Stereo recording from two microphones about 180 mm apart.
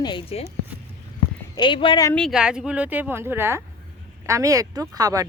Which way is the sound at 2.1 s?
Centre (ahead or behind).